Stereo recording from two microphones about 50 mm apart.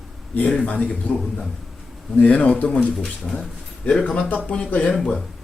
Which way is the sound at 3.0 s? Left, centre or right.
Centre.